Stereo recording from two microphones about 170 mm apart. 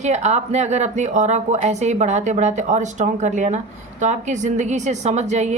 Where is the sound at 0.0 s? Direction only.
40° right (ahead or behind).